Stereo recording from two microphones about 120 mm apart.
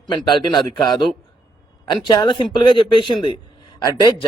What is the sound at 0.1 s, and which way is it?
Speech, 40° left (ahead or behind).